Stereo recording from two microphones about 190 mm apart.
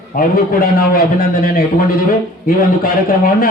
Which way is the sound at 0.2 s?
50° left (ahead or behind).